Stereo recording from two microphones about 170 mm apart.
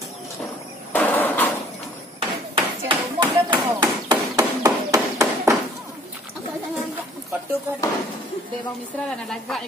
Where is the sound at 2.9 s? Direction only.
25° right (ahead or behind).